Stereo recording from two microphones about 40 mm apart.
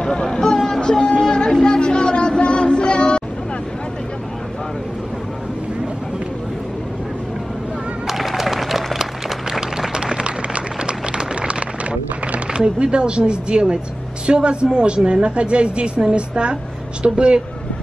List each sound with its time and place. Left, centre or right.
0.0 s vehicle: centre
0.7 s a sound: centre
1.0 s music: left
8.1 s applause: centre
9.5 s a sound: centre
12.5 s a woman's voice: right